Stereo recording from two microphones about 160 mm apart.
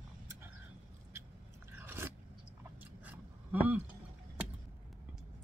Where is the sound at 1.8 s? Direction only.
10° right (ahead or behind).